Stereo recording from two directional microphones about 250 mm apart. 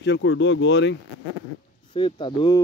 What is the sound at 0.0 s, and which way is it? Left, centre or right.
Speech, left.